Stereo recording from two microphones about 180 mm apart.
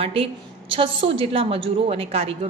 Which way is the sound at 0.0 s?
30° right (ahead or behind).